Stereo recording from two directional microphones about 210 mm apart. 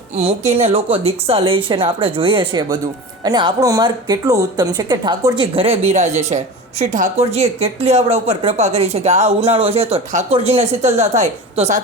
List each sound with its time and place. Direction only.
0.5 s speech: 30° right (ahead or behind)